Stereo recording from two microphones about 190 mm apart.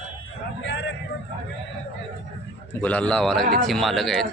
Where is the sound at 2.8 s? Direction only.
5° left (ahead or behind).